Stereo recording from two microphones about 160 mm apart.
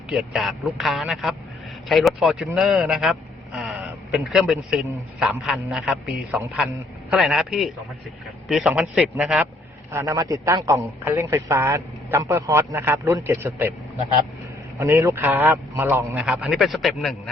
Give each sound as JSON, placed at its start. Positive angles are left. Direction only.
{"t": 0.1, "sound": "a man's voice", "side_deg": 0}
{"t": 9.9, "sound": "a man's voice", "side_deg": -20}
{"t": 14.8, "sound": "a man's voice", "side_deg": -20}